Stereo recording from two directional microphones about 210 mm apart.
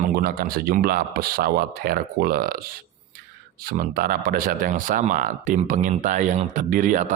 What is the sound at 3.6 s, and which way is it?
Speech, 45° right (ahead or behind).